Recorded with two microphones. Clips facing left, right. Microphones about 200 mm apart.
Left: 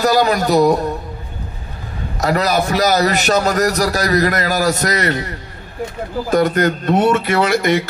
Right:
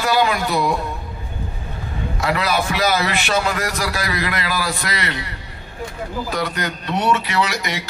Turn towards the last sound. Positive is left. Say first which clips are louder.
# left 8 dB
turn(degrees=50)  # may be behind; listen again after turning